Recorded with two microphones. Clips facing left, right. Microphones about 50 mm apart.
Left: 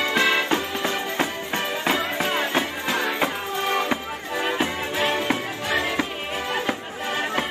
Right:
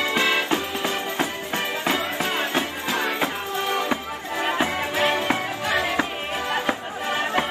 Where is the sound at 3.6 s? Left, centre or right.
Left.